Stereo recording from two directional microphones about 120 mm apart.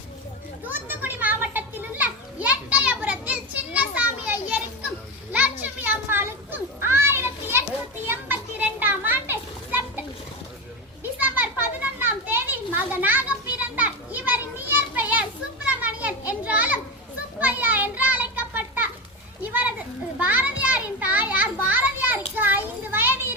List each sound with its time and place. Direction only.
0.6 s children playing: 15° right (ahead or behind)
11.2 s children playing: 15° right (ahead or behind)
20.1 s children playing: 15° right (ahead or behind)
22.4 s a sound: 15° right (ahead or behind)